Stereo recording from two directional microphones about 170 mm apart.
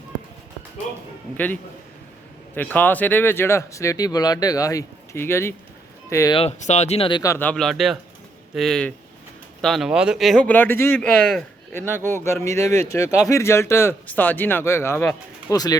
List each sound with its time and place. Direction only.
2.6 s speech: 10° left (ahead or behind)
6.3 s speech: 40° left (ahead or behind)
7.2 s speech: 15° left (ahead or behind)